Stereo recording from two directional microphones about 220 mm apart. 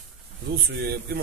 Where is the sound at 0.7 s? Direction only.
45° right (ahead or behind).